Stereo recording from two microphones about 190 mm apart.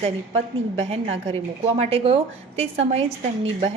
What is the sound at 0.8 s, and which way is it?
A woman's voice, 30° right (ahead or behind).